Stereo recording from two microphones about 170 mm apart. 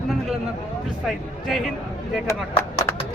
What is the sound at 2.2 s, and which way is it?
Speech, 15° left (ahead or behind).